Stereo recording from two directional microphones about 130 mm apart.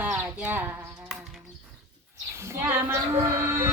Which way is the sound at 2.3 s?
20° right (ahead or behind).